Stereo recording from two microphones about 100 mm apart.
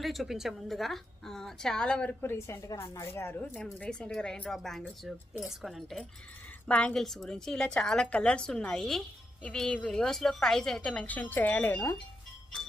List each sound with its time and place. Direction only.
0.0 s a woman's voice: centre (ahead or behind)
2.2 s speech: 25° left (ahead or behind)
3.4 s a woman's voice: 10° left (ahead or behind)
6.7 s a woman's voice: 10° left (ahead or behind)